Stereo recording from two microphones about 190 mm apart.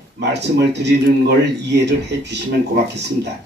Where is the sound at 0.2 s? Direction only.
65° right (ahead or behind).